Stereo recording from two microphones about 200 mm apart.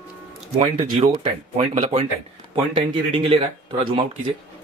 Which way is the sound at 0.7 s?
45° right (ahead or behind).